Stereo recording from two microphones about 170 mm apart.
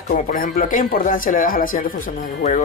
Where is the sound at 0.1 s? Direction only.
55° left (ahead or behind).